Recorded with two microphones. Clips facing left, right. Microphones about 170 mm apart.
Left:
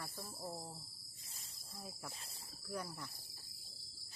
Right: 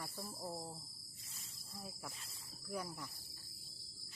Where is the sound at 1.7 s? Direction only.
Centre (ahead or behind).